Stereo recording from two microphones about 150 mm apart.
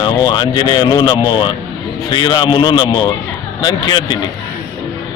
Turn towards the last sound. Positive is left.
turn(degrees=30)  # may be behind; listen again after turning